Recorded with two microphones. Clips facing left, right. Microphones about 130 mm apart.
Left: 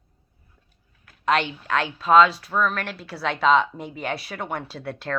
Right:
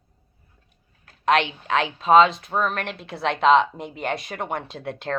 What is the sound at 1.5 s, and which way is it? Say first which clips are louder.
Speech: right 2 dB; 35° right (ahead or behind).